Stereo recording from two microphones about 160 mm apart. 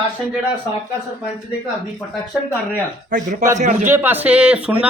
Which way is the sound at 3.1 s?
55° right (ahead or behind).